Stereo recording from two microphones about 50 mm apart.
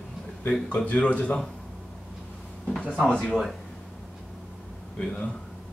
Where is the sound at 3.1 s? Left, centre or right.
Left.